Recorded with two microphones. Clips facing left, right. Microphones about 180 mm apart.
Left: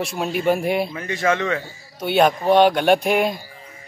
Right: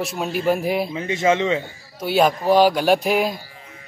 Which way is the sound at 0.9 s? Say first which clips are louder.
Right 2 dB; 20° right (ahead or behind).